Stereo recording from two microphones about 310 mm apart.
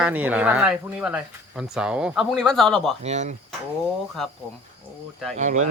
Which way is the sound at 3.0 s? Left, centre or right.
Right.